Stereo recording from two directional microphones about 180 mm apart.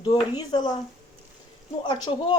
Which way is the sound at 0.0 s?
25° left (ahead or behind).